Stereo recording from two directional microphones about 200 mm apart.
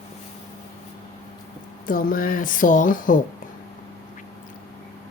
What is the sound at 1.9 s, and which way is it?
Speech, 45° left (ahead or behind).